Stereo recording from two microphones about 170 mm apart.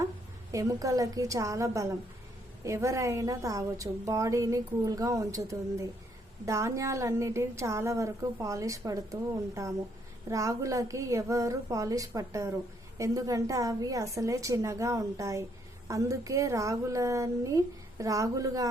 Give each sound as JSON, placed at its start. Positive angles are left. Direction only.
{"t": 0.5, "sound": "a woman's voice", "side_deg": -20}
{"t": 10.2, "sound": "a woman's voice", "side_deg": -20}